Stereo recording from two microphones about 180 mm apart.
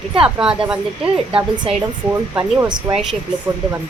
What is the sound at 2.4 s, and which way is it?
Speech, 10° right (ahead or behind).